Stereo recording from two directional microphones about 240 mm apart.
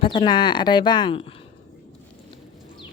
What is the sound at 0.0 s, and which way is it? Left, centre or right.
Speech, centre.